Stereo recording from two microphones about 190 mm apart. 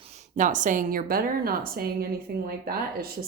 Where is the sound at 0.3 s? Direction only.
40° right (ahead or behind).